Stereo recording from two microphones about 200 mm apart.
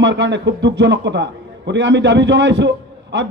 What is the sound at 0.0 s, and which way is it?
A man's voice, 60° right (ahead or behind).